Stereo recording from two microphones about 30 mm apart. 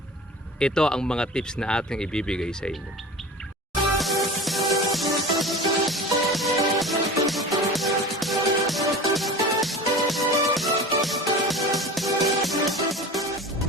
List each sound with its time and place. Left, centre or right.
0.6 s speech: left
3.9 s music: centre